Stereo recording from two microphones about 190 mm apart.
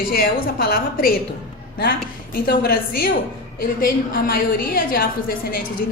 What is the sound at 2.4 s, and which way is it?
A woman's voice, 50° left (ahead or behind).